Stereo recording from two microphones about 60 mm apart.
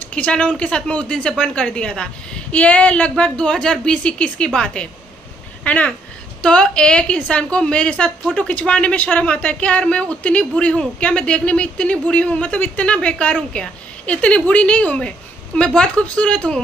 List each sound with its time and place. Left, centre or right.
0.1 s a woman's voice: left